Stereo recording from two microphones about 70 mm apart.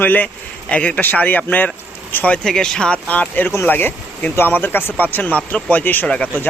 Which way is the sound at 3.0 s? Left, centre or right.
Left.